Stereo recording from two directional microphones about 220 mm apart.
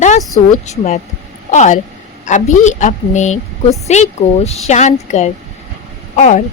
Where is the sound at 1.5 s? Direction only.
30° left (ahead or behind).